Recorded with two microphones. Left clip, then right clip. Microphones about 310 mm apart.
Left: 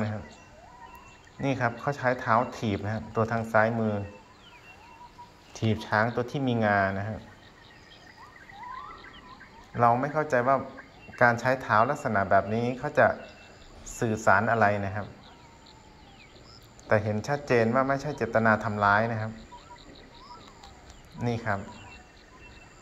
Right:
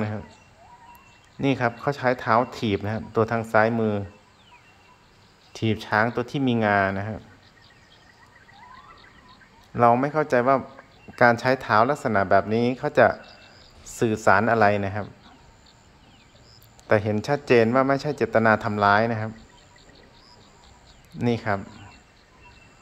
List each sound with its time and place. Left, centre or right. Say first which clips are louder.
1.4 s speech: right 5 dB; centre
3.7 s speech: right 5 dB; right
5.5 s speech: right 4 dB; centre
6.9 s speech: right 4 dB; right
9.8 s speech: right 4 dB; centre
17.1 s speech: right 6 dB; centre
21.3 s speech: right 5 dB; centre